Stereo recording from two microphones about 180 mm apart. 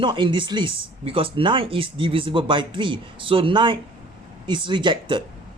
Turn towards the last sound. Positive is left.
turn(degrees=-25)  # may be behind; listen again after turning